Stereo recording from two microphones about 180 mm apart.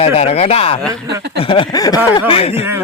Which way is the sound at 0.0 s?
35° left (ahead or behind).